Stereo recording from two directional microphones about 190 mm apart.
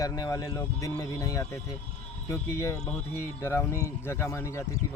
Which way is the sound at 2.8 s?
5° left (ahead or behind).